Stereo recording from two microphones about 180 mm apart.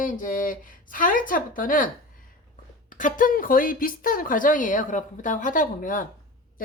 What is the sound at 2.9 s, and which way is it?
A woman's voice, 45° left (ahead or behind).